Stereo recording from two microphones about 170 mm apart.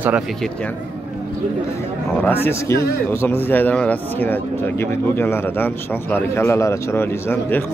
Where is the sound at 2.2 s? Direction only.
10° left (ahead or behind).